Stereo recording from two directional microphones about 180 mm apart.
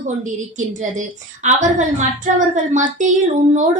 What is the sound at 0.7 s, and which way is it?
A woman's voice, 45° right (ahead or behind).